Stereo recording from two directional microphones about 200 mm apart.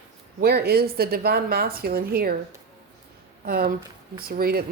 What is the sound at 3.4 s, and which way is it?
A woman's voice, 50° right (ahead or behind).